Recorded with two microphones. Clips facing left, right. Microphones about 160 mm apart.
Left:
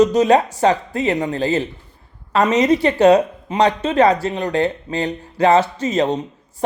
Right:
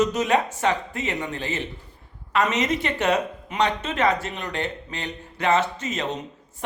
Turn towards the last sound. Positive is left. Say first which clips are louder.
# left 10 dB
turn(degrees=35)  # may be behind; listen again after turning